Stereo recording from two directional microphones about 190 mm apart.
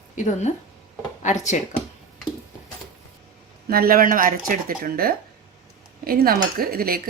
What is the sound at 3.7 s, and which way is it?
Speech, 50° right (ahead or behind).